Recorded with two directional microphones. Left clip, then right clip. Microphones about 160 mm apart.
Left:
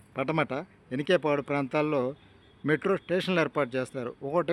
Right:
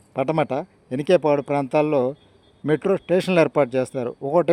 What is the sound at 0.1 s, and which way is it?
Speech, 30° right (ahead or behind).